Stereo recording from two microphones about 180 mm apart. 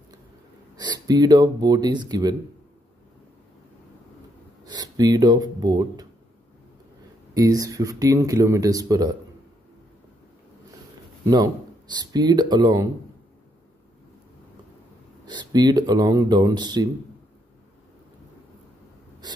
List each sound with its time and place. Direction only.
0.7 s speech: 20° right (ahead or behind)
4.6 s speech: 20° right (ahead or behind)
7.3 s speech: 20° right (ahead or behind)
11.2 s speech: 20° right (ahead or behind)
15.2 s speech: 25° right (ahead or behind)
19.2 s a sound: 25° right (ahead or behind)